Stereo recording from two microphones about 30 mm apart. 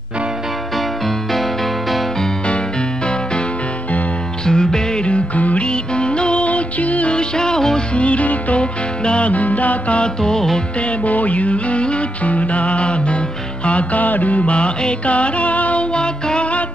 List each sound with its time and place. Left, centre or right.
4.5 s music: left
5.3 s music: left
5.7 s music: left
6.4 s music: left
7.1 s music: left
7.9 s music: left
9.3 s music: left
10.2 s music: centre
11.1 s music: left
14.0 s mantra: left
14.4 s music: left
15.9 s music: left